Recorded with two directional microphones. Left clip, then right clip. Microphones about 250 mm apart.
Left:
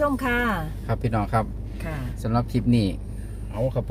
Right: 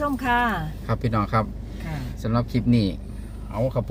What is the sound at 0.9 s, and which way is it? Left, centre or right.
Speech, centre.